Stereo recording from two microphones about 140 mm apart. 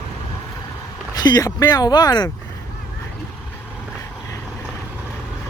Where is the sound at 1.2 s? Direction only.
30° left (ahead or behind).